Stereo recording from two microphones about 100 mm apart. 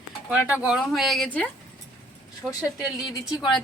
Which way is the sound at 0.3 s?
15° right (ahead or behind).